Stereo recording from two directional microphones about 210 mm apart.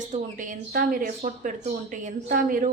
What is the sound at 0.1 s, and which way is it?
A woman's voice, 40° right (ahead or behind).